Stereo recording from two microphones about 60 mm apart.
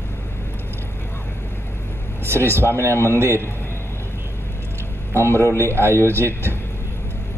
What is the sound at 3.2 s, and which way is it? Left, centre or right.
Speech, right.